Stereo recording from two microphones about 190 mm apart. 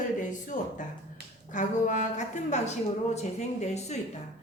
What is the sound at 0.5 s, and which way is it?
A woman's voice, 40° left (ahead or behind).